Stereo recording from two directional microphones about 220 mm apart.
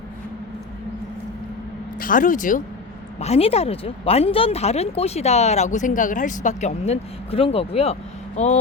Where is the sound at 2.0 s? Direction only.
40° left (ahead or behind).